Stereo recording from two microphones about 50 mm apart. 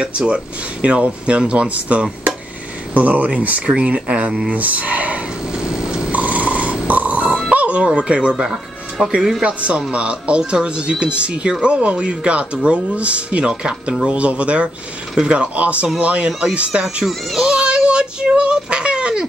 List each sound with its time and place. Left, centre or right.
0.8 s speech: right
5.5 s a sound: centre
6.1 s snoring: right
7.5 s speech: right
17.4 s child singing: centre